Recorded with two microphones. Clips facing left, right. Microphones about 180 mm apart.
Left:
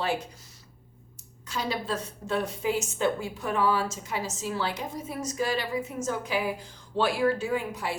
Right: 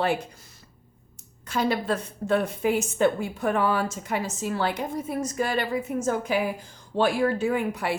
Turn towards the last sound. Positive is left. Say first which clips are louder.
# right 4 dB
turn(degrees=-60)  # may be behind; listen again after turning